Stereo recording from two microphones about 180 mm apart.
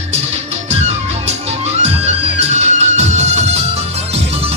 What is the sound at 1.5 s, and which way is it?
Music, 35° right (ahead or behind).